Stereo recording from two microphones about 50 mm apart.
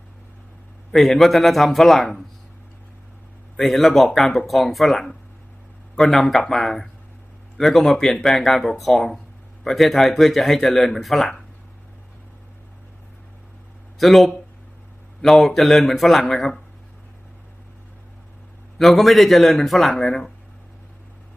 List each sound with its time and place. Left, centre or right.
0.9 s speech: centre
3.6 s speech: centre
14.0 s speech: centre
18.8 s speech: centre